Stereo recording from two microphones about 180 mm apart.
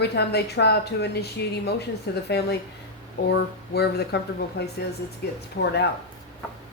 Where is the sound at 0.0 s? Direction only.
65° left (ahead or behind).